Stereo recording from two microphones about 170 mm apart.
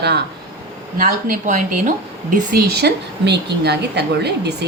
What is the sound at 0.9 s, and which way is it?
A woman's voice, 50° right (ahead or behind).